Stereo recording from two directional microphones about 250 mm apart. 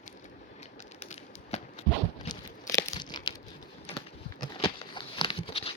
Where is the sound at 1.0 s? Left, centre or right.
Left.